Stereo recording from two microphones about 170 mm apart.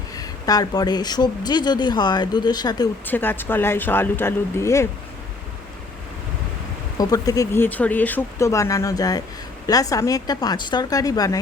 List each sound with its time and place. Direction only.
0.2 s speech: 20° left (ahead or behind)
3.1 s speech: 10° left (ahead or behind)
7.0 s speech: 20° left (ahead or behind)